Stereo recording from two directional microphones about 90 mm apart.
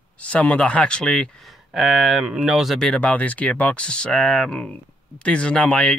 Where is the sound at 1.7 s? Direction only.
5° right (ahead or behind).